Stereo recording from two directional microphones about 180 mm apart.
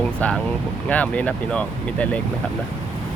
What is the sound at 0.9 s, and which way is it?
Speech, 5° left (ahead or behind).